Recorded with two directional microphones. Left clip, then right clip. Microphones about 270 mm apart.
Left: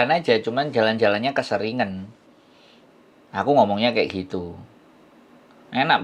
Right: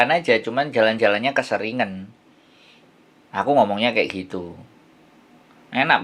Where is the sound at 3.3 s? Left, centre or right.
Left.